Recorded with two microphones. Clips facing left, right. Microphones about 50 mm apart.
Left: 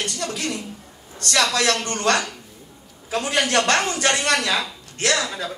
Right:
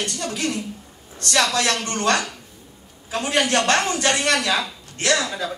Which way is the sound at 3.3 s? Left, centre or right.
Right.